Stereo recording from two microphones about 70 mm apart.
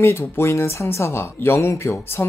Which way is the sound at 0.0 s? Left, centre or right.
Left.